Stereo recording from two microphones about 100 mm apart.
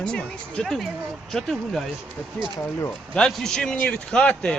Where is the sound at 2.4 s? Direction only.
50° right (ahead or behind).